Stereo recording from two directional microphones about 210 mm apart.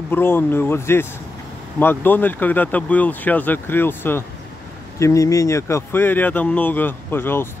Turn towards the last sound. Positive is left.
turn(degrees=10)  # may be behind; listen again after turning